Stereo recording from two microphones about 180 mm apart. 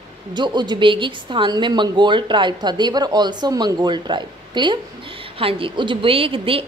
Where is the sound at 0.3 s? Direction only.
25° right (ahead or behind).